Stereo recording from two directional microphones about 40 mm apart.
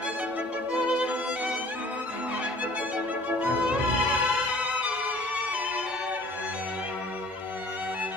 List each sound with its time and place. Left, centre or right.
0.8 s music: right
3.3 s music: right